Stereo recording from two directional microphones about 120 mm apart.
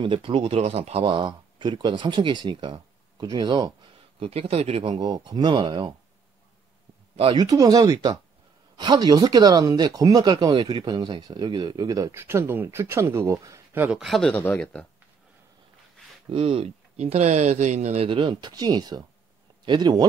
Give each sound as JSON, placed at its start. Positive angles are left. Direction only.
{"t": 0.0, "sound": "speech", "side_deg": -45}
{"t": 0.6, "sound": "speech", "side_deg": -60}
{"t": 4.2, "sound": "speech", "side_deg": -55}
{"t": 7.3, "sound": "speech", "side_deg": -30}
{"t": 12.1, "sound": "speech", "side_deg": -20}
{"t": 13.8, "sound": "speech", "side_deg": -5}
{"t": 14.3, "sound": "speech", "side_deg": 15}
{"t": 16.3, "sound": "speech", "side_deg": -50}
{"t": 18.0, "sound": "speech", "side_deg": -45}